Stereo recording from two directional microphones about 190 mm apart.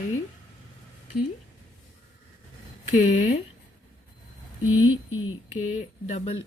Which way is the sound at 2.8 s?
35° left (ahead or behind).